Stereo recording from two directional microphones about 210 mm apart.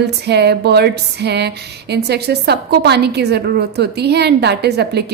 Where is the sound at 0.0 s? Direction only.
50° right (ahead or behind).